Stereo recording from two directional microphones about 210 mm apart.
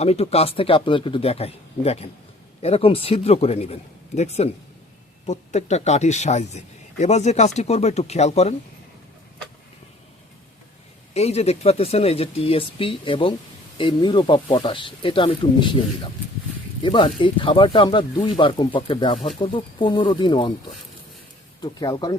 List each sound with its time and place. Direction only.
0.0 s speech: 30° left (ahead or behind)
11.1 s speech: 30° left (ahead or behind)
16.8 s speech: 25° left (ahead or behind)
21.6 s speech: 20° left (ahead or behind)